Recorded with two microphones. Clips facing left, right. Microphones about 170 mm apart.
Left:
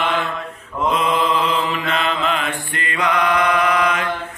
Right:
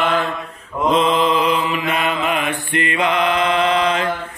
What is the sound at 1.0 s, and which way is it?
Mantra, 20° right (ahead or behind).